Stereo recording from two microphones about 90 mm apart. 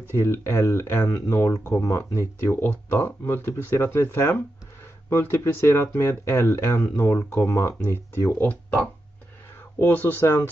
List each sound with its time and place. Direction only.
0.1 s speech: 25° left (ahead or behind)
7.8 s speech: 25° left (ahead or behind)
9.8 s speech: 20° left (ahead or behind)